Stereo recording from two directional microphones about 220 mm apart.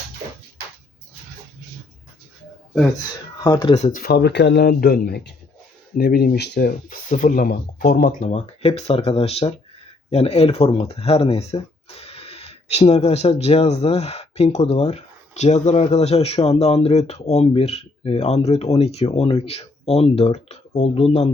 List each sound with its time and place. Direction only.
3.4 s speech: 20° left (ahead or behind)
3.8 s speech: 35° left (ahead or behind)